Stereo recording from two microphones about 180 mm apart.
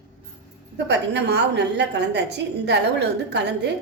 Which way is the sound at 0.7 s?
75° right (ahead or behind).